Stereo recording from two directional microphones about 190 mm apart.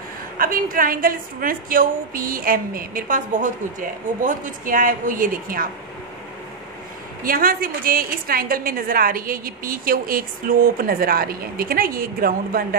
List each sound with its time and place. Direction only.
0.4 s a woman's voice: 45° right (ahead or behind)
7.2 s a woman's voice: 50° right (ahead or behind)